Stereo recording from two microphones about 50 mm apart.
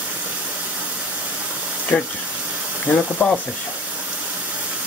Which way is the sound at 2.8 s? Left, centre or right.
Left.